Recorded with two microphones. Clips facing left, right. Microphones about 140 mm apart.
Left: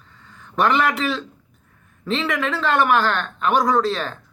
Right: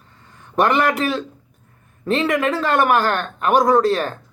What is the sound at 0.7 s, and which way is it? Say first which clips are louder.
Speech: right 2 dB; 40° right (ahead or behind).